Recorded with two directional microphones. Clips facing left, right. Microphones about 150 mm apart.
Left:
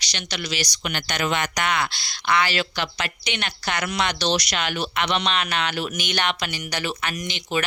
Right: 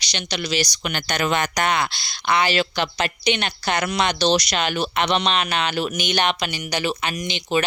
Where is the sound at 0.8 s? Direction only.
45° right (ahead or behind).